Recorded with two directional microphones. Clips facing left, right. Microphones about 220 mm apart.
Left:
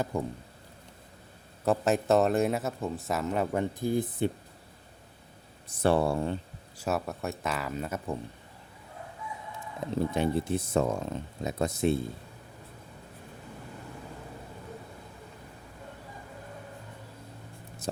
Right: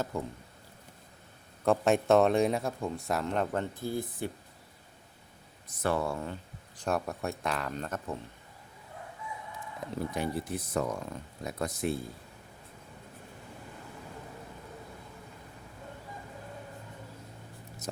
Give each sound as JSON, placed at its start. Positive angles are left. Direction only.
{"t": 0.1, "sound": "speech", "side_deg": 15}
{"t": 1.6, "sound": "speech", "side_deg": 0}
{"t": 5.6, "sound": "speech", "side_deg": 30}
{"t": 6.7, "sound": "speech", "side_deg": 5}
{"t": 9.9, "sound": "speech", "side_deg": 25}